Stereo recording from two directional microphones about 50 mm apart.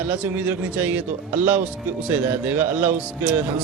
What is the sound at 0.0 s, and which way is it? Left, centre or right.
Speech, right.